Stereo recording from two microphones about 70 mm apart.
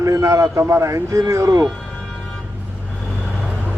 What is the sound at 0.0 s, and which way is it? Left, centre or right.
A man's voice, right.